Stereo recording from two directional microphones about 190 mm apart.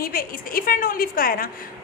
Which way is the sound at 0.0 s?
50° left (ahead or behind).